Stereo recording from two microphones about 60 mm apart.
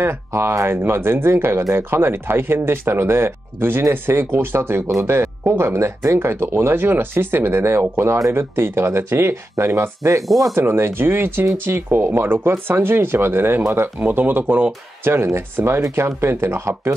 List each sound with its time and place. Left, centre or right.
0.0 s speech: right
10.6 s speech: right